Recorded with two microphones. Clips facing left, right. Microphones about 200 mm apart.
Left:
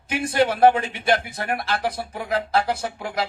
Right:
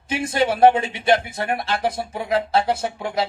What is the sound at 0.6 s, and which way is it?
A man's voice, 25° right (ahead or behind).